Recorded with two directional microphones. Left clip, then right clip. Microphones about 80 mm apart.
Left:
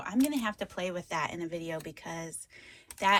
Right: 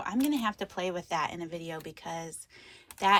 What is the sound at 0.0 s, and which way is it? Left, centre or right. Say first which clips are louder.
Speech: right 1 dB; right.